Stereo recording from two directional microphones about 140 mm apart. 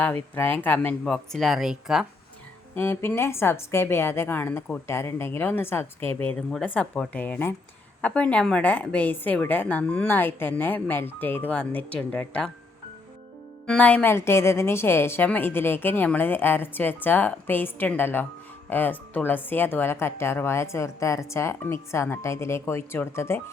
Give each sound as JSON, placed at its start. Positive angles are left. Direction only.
{"t": 0.0, "sound": "speech", "side_deg": 10}
{"t": 2.7, "sound": "speech", "side_deg": 15}
{"t": 13.7, "sound": "speech", "side_deg": 10}